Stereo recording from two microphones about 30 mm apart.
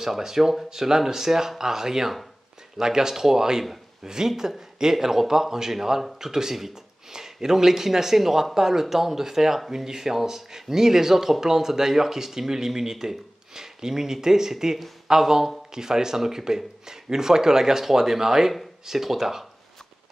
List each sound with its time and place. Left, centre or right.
0.0 s speech: centre